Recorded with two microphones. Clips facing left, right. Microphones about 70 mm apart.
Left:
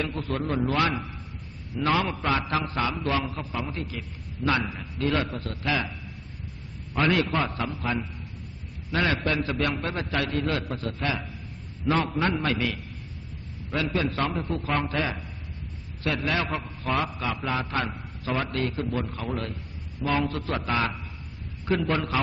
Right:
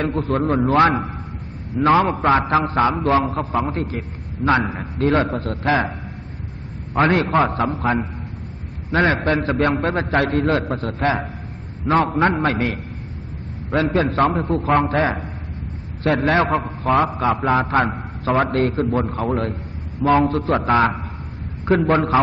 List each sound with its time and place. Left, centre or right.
0.0 s a man's voice: right
7.0 s a man's voice: right